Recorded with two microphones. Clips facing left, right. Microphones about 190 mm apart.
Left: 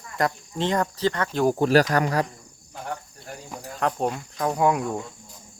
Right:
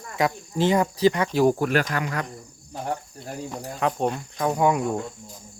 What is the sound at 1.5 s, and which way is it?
Speech, 30° left (ahead or behind).